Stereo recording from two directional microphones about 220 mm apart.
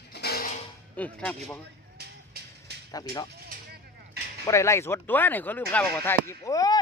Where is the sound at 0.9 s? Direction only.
5° left (ahead or behind).